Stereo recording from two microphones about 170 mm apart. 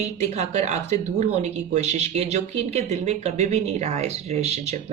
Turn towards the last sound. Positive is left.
turn(degrees=-40)  # may be behind; listen again after turning